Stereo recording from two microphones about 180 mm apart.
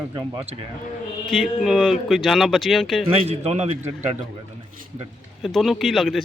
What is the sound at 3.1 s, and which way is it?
Speech, 35° right (ahead or behind).